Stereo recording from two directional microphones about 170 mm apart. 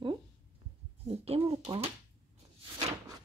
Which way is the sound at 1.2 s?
35° right (ahead or behind).